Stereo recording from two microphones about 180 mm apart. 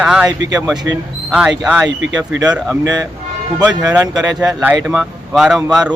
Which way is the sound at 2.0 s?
90° right.